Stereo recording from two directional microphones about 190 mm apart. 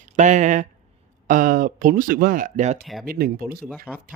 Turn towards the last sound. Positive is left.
turn(degrees=0)  # may be behind; listen again after turning